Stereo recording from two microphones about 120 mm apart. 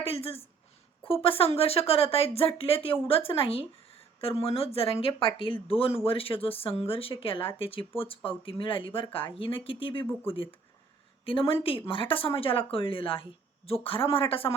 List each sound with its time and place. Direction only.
0.0 s speech: 55° left (ahead or behind)
11.3 s speech: 50° left (ahead or behind)